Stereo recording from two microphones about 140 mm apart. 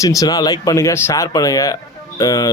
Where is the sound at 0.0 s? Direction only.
25° left (ahead or behind).